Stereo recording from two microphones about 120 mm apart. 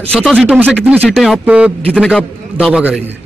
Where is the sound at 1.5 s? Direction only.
10° right (ahead or behind).